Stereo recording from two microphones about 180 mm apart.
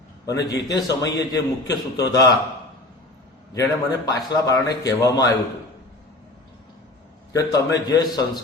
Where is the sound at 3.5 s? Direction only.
20° left (ahead or behind).